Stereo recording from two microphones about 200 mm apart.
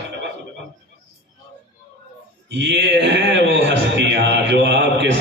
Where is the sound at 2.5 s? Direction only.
60° right (ahead or behind).